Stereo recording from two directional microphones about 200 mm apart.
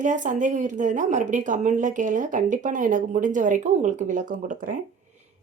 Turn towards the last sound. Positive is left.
turn(degrees=-40)  # may be behind; listen again after turning